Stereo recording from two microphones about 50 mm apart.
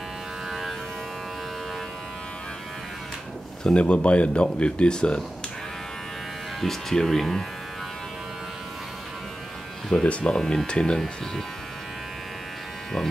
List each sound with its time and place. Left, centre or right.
0.5 s a sound: centre
3.7 s speech: left
6.6 s speech: centre
10.0 s speech: centre